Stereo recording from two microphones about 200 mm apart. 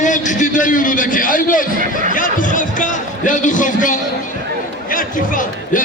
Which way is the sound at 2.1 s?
40° left (ahead or behind).